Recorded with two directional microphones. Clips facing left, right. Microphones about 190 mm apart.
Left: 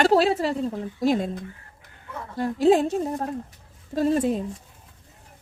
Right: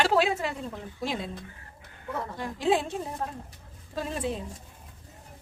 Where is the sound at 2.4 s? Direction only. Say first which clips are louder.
Left 8 dB; 40° left (ahead or behind).